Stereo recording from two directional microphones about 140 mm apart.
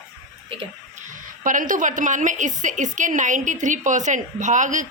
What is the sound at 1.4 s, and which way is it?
A woman's voice, 70° right (ahead or behind).